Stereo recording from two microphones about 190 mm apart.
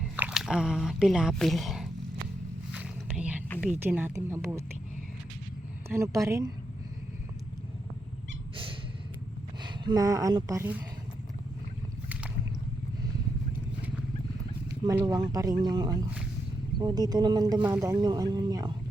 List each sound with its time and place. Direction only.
0.0 s speech: 5° right (ahead or behind)
2.7 s whispering: 5° right (ahead or behind)
3.6 s speech: 10° right (ahead or behind)
5.9 s speech: 15° right (ahead or behind)
9.6 s speech: 20° right (ahead or behind)
14.8 s speech: 20° right (ahead or behind)